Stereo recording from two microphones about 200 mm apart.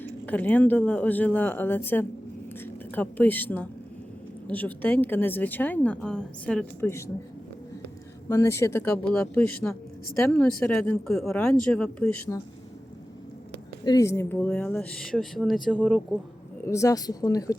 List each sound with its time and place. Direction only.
0.0 s a woman's voice: 10° left (ahead or behind)
8.3 s a woman's voice: 15° left (ahead or behind)
13.8 s a woman's voice: 15° left (ahead or behind); by 16.0 s centre (ahead or behind)
16.6 s a woman's voice: 15° left (ahead or behind)